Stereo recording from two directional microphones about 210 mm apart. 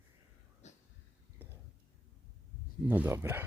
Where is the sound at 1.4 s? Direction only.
10° right (ahead or behind).